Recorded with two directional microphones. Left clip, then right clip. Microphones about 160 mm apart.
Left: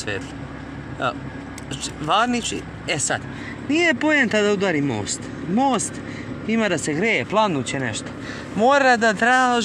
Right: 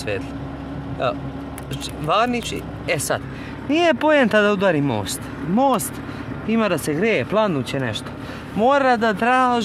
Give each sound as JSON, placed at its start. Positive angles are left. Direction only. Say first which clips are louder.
{"t": 2.0, "sound": "speech", "louder": "even", "side_deg": -10}
{"t": 3.7, "sound": "speech", "louder": "right 2 dB", "side_deg": -50}
{"t": 5.6, "sound": "speech", "louder": "right 2 dB", "side_deg": -30}
{"t": 8.5, "sound": "speech", "louder": "left 1 dB", "side_deg": 0}